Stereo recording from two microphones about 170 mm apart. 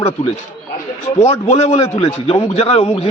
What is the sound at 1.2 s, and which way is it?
A man's voice, 40° left (ahead or behind).